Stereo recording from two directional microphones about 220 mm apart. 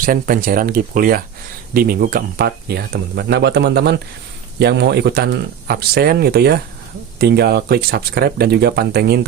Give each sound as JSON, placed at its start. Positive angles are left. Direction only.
{"t": 0.0, "sound": "speech", "side_deg": -40}